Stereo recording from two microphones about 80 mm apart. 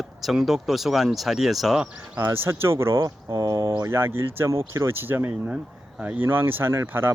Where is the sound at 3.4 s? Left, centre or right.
Right.